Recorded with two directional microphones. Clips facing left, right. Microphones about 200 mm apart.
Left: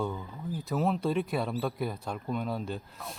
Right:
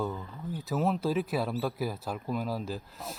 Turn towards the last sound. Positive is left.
turn(degrees=0)  # may be behind; listen again after turning